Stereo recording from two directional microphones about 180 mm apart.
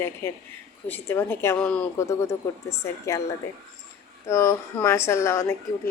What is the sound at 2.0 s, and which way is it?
A woman's voice, 15° left (ahead or behind).